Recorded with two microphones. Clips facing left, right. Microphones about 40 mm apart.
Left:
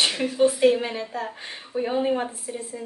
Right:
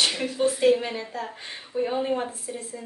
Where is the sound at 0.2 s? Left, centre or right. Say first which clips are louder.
Left 7 dB; centre.